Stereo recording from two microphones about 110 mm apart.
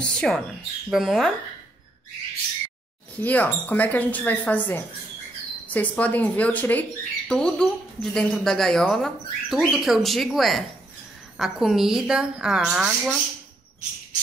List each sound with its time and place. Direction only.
0.0 s speech: 10° left (ahead or behind)
3.2 s speech: 15° left (ahead or behind); by 13.2 s 5° right (ahead or behind)